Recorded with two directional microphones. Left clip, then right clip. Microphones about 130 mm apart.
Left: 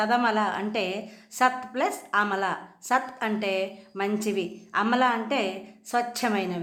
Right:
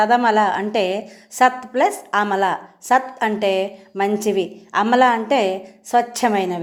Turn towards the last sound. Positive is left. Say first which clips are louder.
# right 9 dB
turn(degrees=-30)  # may be behind; listen again after turning